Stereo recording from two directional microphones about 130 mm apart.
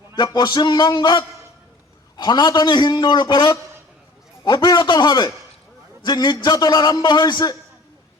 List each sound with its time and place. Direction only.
0.2 s a man's voice: 35° left (ahead or behind)